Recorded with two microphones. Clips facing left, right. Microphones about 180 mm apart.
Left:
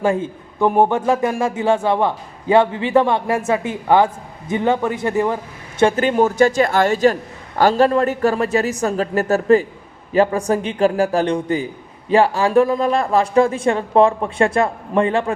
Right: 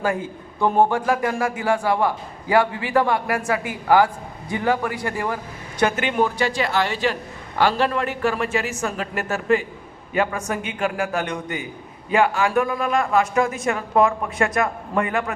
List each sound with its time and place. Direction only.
0.0 s a man's voice: 25° left (ahead or behind)
5.8 s a man's voice: 35° left (ahead or behind)